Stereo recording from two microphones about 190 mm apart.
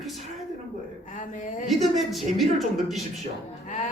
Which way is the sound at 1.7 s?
Centre (ahead or behind).